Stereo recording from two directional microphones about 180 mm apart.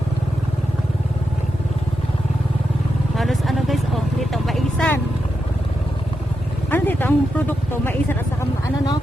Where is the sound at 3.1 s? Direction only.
Centre (ahead or behind).